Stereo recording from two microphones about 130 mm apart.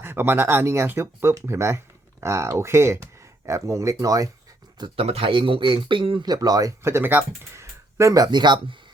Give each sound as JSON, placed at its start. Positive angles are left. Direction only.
{"t": 0.0, "sound": "speech", "side_deg": -15}
{"t": 4.9, "sound": "speech", "side_deg": -50}